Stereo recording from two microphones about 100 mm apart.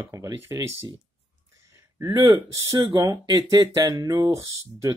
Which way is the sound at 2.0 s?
35° right (ahead or behind).